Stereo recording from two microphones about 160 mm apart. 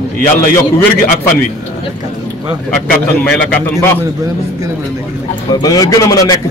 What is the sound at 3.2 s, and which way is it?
Speech, 5° left (ahead or behind).